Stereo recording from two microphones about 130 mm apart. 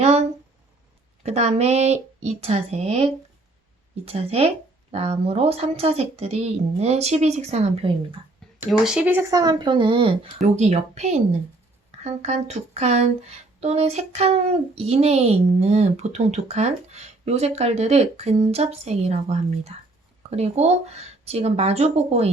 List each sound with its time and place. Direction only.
0.0 s a sound: 55° right (ahead or behind)
1.2 s a woman's voice: 55° right (ahead or behind)
8.4 s a sound: 5° left (ahead or behind)
8.8 s speech: 5° right (ahead or behind)
9.3 s speech: 30° right (ahead or behind)
10.4 s a woman's voice: 60° right (ahead or behind)